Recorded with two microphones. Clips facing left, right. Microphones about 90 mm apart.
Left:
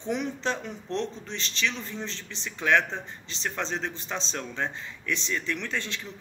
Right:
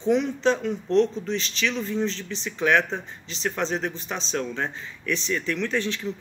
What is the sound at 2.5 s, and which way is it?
Speech, 15° right (ahead or behind).